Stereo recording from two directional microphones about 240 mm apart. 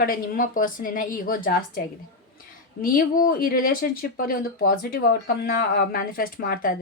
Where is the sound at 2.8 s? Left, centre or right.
Left.